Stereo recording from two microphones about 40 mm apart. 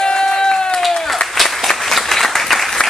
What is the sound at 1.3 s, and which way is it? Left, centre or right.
Applause, centre.